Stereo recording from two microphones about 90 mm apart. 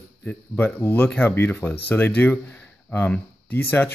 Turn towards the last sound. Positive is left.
turn(degrees=20)  # may be behind; listen again after turning